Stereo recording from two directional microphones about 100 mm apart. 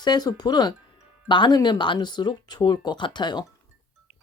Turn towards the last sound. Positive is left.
turn(degrees=45)  # may be behind; listen again after turning